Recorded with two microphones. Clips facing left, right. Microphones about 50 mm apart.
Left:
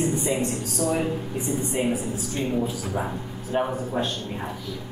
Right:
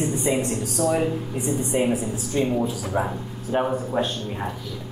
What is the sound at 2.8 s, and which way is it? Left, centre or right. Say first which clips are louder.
Speech: right 3 dB; centre.